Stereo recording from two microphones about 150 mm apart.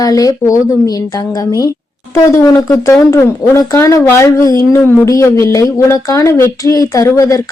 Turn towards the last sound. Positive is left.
turn(degrees=20)  # may be behind; listen again after turning